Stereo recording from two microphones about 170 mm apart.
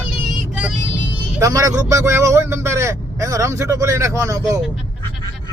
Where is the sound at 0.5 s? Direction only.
5° right (ahead or behind).